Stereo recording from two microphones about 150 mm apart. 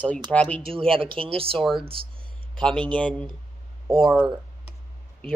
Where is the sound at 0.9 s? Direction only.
35° right (ahead or behind).